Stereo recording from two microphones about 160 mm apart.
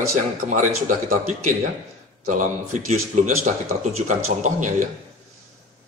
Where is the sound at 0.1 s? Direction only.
50° right (ahead or behind).